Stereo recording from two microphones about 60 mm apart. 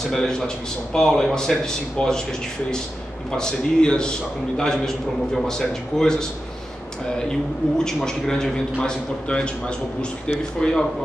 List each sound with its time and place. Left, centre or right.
0.1 s a man's voice: centre
3.3 s a man's voice: centre
7.2 s a man's voice: centre